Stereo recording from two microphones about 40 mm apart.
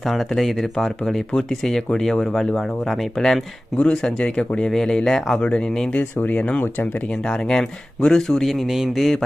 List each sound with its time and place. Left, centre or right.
0.0 s speech: centre
3.8 s speech: left
5.4 s speech: left
7.1 s speech: centre
8.4 s speech: centre